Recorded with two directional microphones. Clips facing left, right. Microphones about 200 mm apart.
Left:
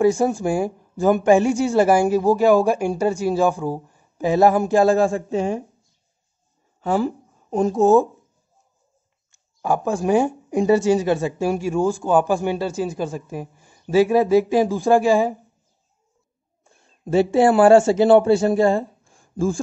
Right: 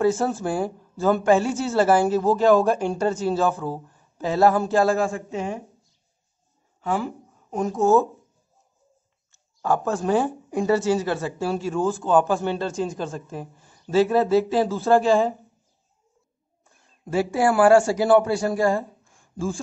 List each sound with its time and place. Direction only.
0.0 s speech: 15° left (ahead or behind)
4.9 s speech: 30° left (ahead or behind)
6.8 s speech: 35° left (ahead or behind); by 8.1 s 20° left (ahead or behind)
9.3 s speech: 10° left (ahead or behind)
16.6 s a man's voice: 25° left (ahead or behind)
19.3 s speech: 45° left (ahead or behind)